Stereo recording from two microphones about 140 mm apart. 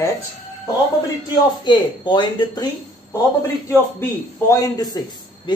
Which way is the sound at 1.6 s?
35° left (ahead or behind).